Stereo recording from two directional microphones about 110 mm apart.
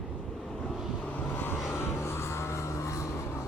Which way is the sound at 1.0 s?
15° left (ahead or behind).